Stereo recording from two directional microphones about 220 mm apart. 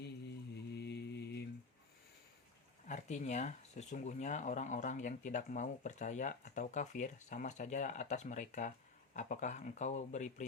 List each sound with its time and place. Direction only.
0.5 s mantra: 50° left (ahead or behind)
2.8 s speech: 35° left (ahead or behind)